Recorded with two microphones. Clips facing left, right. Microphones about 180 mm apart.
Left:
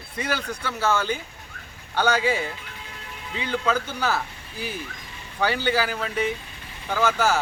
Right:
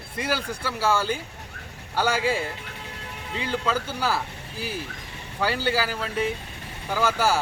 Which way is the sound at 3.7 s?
5° right (ahead or behind).